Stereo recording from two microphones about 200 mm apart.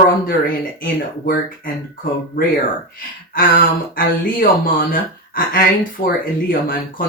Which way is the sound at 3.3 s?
45° left (ahead or behind).